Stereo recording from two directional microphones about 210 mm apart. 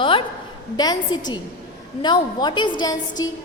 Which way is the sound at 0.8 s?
20° left (ahead or behind).